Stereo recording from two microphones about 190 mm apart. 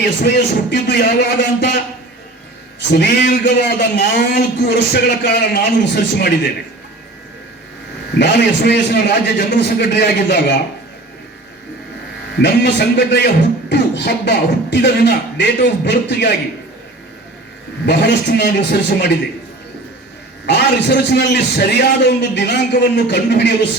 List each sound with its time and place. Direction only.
0.0 s a man's voice: 60° left (ahead or behind)
2.9 s a man's voice: 65° left (ahead or behind)
8.2 s a man's voice: 60° left (ahead or behind)
12.4 s a man's voice: 65° left (ahead or behind)
17.8 s a man's voice: 60° left (ahead or behind)
20.5 s a man's voice: 60° left (ahead or behind)